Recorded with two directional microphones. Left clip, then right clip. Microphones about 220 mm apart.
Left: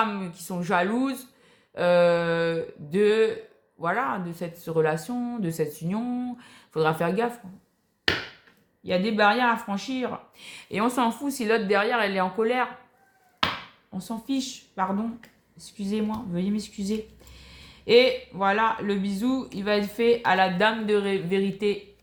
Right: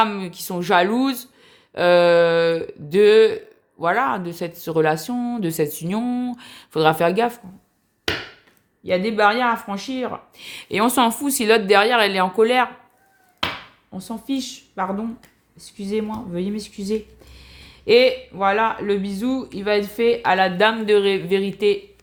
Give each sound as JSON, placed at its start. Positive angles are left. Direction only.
{"t": 0.0, "sound": "speech", "side_deg": -45}
{"t": 8.8, "sound": "speech", "side_deg": -30}
{"t": 13.9, "sound": "speech", "side_deg": -30}